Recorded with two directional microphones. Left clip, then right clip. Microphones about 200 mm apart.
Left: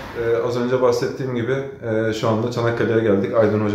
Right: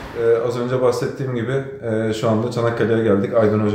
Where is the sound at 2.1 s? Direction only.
15° right (ahead or behind).